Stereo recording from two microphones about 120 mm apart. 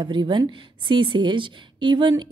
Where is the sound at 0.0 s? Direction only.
40° right (ahead or behind).